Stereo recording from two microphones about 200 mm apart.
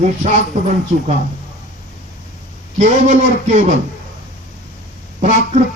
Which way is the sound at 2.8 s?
35° right (ahead or behind).